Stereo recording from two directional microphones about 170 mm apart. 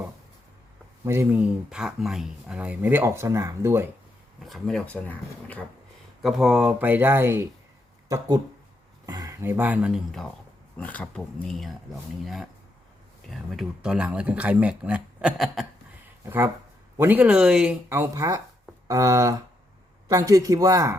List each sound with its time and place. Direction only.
1.0 s speech: 15° right (ahead or behind)
4.4 s speech: centre (ahead or behind)
6.2 s speech: 5° right (ahead or behind)
9.0 s speech: 20° right (ahead or behind); by 15.6 s 5° right (ahead or behind)
16.2 s speech: 15° right (ahead or behind)